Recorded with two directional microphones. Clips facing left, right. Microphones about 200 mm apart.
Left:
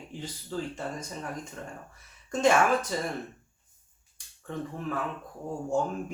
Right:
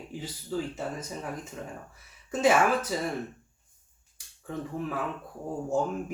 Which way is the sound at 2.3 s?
5° right (ahead or behind).